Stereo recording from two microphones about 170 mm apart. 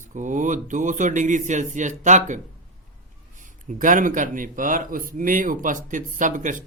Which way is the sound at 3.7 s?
50° right (ahead or behind).